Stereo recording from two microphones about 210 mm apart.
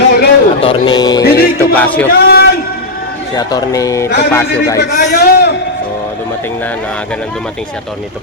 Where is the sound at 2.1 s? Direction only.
50° left (ahead or behind).